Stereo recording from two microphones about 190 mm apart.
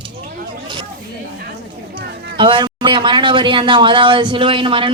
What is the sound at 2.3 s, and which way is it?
A man's voice, 25° right (ahead or behind).